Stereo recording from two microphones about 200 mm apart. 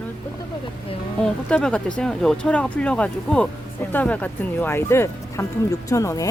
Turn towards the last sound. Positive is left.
turn(degrees=15)  # may be behind; listen again after turning